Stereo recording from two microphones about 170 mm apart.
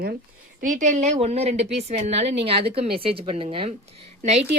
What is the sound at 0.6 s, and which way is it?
A woman's voice, 50° right (ahead or behind).